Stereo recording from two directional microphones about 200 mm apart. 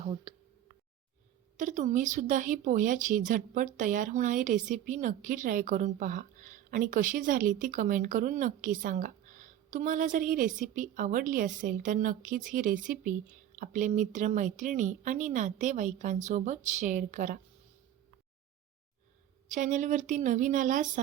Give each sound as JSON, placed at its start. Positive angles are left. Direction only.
{"t": 0.0, "sound": "speech", "side_deg": -25}
{"t": 1.5, "sound": "speech", "side_deg": -40}
{"t": 19.5, "sound": "speech", "side_deg": -40}